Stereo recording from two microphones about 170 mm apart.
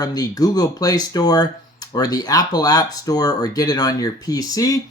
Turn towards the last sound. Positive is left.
turn(degrees=20)  # may be behind; listen again after turning